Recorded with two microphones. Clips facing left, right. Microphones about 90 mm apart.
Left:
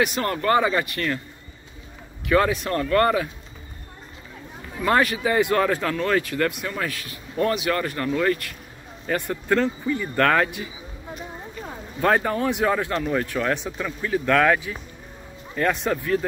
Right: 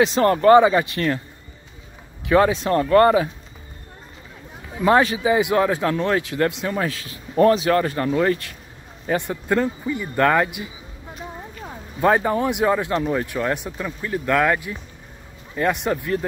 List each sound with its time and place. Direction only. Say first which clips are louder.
0.0 s speech: right 7 dB; 30° right (ahead or behind)
2.2 s speech: right 3 dB; 20° right (ahead or behind)
4.7 s speech: right 4 dB; 20° right (ahead or behind)
12.0 s speech: right 3 dB; 15° right (ahead or behind)